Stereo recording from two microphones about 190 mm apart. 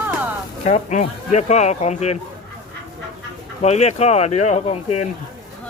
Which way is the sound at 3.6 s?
35° left (ahead or behind).